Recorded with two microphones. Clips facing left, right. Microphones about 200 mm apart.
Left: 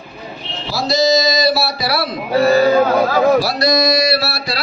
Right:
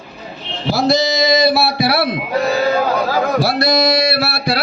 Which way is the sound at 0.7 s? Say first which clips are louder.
Right 5 dB; 55° right (ahead or behind).